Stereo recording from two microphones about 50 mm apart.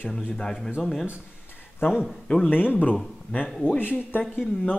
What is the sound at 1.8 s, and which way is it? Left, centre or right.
Speech, left.